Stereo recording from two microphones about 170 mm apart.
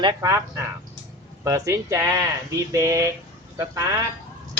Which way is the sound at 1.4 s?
20° right (ahead or behind).